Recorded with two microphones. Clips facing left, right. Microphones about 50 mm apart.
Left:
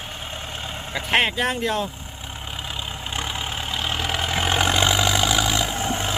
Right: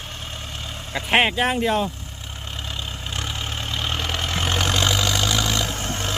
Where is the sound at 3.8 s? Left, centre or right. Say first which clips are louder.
Left 1 dB; centre.